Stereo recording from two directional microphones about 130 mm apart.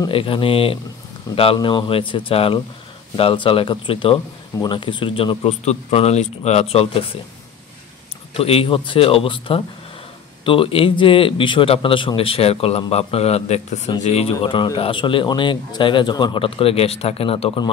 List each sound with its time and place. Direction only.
0.1 s a man's voice: 45° left (ahead or behind)
8.4 s a man's voice: 45° left (ahead or behind)
14.4 s speech: 40° left (ahead or behind)